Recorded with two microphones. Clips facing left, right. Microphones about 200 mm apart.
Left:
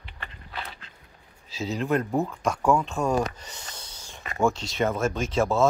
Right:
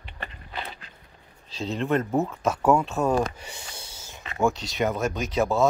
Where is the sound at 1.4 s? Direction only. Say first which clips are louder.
Even; 5° left (ahead or behind).